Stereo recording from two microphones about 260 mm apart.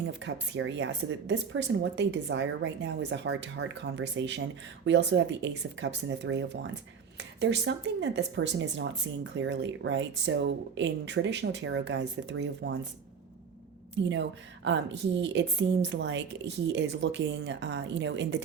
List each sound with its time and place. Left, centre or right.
0.2 s a woman's voice: right
14.0 s a woman's voice: right